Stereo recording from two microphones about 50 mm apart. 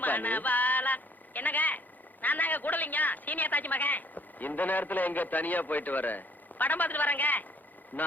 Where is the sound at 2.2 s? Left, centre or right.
Left.